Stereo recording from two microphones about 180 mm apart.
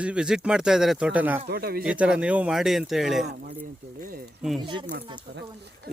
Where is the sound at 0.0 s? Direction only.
5° right (ahead or behind).